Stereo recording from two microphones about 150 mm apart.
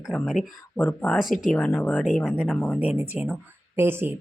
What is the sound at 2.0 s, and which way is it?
Speech, centre (ahead or behind).